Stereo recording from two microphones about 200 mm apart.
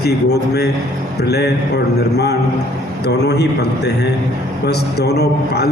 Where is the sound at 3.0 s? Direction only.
55° left (ahead or behind).